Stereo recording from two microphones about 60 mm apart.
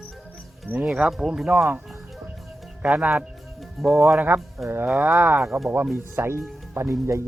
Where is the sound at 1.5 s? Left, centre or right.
Right.